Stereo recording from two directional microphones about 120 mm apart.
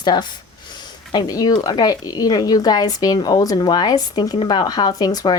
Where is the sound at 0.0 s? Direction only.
40° left (ahead or behind).